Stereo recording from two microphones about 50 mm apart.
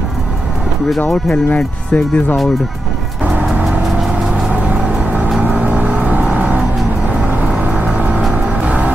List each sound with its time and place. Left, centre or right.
1.3 s speech: left
3.8 s vehicle: centre
4.5 s vehicle: right
5.4 s vehicle: right
7.6 s vehicle: right
8.6 s music: right